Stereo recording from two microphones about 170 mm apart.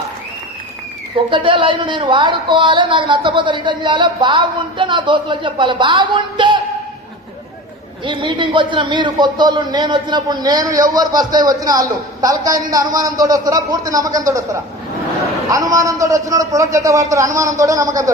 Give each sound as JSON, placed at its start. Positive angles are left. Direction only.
{"t": 1.3, "sound": "speech", "side_deg": -30}
{"t": 8.0, "sound": "speech", "side_deg": -30}